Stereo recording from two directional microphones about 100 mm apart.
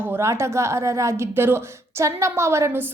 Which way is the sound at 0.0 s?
25° right (ahead or behind).